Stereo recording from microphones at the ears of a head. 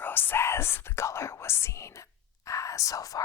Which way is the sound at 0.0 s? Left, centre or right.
Left.